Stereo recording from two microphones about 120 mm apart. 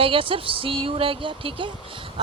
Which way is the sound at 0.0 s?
50° right (ahead or behind).